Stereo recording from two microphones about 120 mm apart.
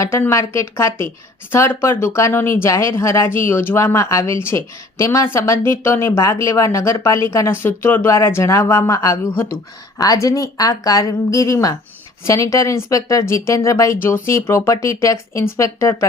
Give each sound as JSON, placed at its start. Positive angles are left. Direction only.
{"t": 0.0, "sound": "speech", "side_deg": 25}